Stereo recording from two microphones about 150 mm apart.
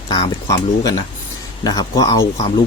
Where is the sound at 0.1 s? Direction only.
25° left (ahead or behind).